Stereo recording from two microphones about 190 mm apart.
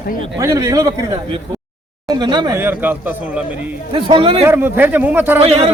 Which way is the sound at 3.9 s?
25° right (ahead or behind).